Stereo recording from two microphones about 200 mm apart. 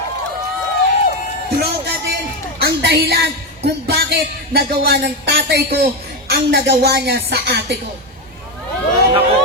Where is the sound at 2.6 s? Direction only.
55° right (ahead or behind).